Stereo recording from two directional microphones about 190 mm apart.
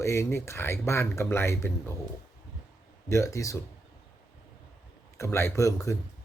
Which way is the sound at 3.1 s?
15° left (ahead or behind).